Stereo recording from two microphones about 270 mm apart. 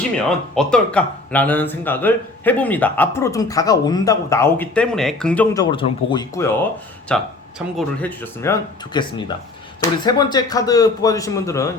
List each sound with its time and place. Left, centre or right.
0.3 s speech: centre
5.7 s speech: centre